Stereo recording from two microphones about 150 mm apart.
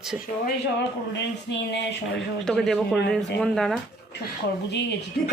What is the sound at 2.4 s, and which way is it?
Speech, 5° left (ahead or behind).